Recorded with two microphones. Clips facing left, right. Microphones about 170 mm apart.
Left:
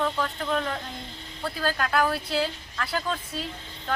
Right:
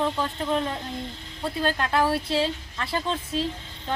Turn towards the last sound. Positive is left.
turn(degrees=-25)  # may be behind; listen again after turning